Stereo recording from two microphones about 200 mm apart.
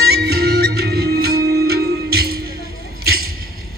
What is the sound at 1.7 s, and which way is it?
Music, 50° right (ahead or behind).